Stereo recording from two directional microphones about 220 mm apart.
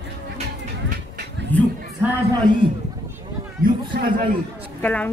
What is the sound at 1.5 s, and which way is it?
Speech, 10° left (ahead or behind).